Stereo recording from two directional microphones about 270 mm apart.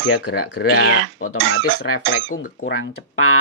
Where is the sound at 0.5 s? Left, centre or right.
Left.